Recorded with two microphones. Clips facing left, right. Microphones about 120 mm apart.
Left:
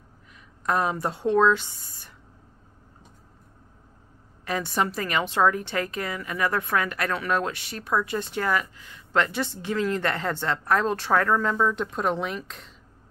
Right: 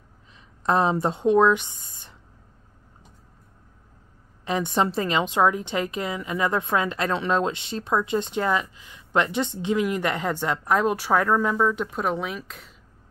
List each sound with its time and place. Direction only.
0.7 s a woman's voice: 25° right (ahead or behind)
4.5 s a woman's voice: 20° right (ahead or behind); by 12.7 s centre (ahead or behind)